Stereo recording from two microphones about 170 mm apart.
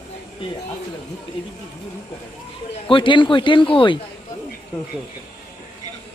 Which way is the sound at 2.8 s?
30° left (ahead or behind).